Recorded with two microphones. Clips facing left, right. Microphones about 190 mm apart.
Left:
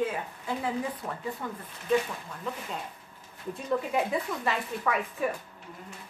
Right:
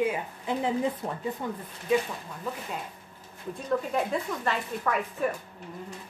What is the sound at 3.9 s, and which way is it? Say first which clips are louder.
Speech: even; 5° left (ahead or behind).